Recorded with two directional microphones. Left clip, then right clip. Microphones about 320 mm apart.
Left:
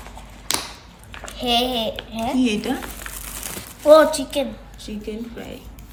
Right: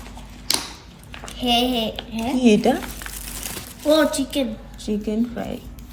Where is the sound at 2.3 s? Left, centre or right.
Centre.